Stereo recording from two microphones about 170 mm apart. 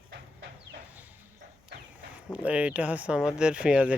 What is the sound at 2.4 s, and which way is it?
Speech, 5° right (ahead or behind).